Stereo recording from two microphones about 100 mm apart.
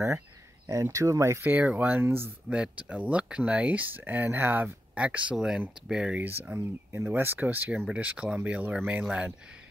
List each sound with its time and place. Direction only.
0.7 s speech: 30° right (ahead or behind)
1.4 s speech: 15° right (ahead or behind)
6.2 s speech: 20° right (ahead or behind)